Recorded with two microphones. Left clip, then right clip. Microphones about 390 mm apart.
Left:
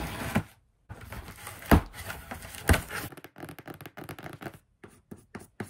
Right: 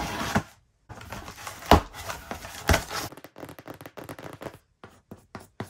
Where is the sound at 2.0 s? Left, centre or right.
Centre.